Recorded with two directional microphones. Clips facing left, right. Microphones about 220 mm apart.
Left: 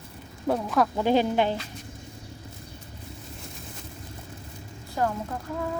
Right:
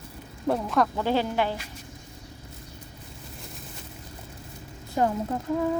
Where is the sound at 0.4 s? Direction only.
Centre (ahead or behind).